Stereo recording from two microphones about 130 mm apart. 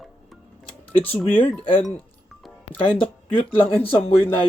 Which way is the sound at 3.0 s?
40° left (ahead or behind).